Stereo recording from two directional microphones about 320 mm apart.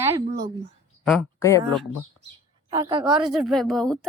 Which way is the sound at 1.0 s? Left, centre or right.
Centre.